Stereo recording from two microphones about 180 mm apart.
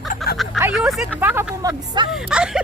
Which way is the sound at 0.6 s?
5° right (ahead or behind).